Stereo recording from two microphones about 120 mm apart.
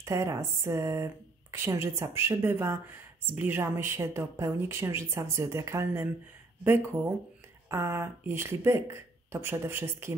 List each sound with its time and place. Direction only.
0.0 s speech: 25° right (ahead or behind)